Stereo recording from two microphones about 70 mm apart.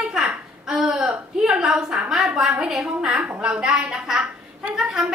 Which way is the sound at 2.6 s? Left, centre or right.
Centre.